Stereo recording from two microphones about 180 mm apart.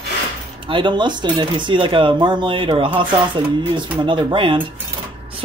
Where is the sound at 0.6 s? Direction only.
25° right (ahead or behind).